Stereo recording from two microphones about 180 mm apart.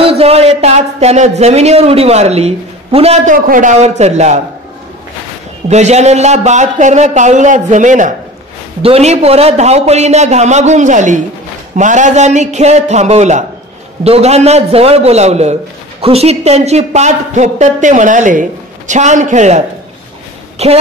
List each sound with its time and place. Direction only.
0.0 s a woman's voice: 35° right (ahead or behind)
3.4 s a man's voice: 45° right (ahead or behind)
5.7 s a woman's voice: 40° right (ahead or behind)